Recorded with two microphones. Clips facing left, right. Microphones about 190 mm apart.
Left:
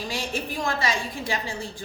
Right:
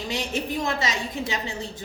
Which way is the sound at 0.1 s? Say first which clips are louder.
Right 5 dB; 20° right (ahead or behind).